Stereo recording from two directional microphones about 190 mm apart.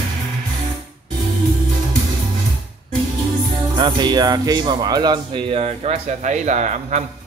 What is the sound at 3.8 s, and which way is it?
Speech, 25° right (ahead or behind).